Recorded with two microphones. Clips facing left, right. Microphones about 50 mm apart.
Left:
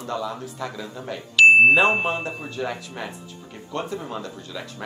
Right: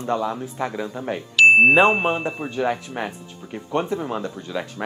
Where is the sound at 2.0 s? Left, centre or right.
Centre.